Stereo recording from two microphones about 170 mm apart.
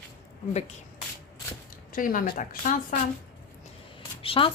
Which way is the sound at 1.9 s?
55° left (ahead or behind).